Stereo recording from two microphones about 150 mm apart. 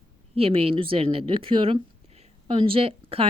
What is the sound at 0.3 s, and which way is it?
A woman's voice, 40° right (ahead or behind).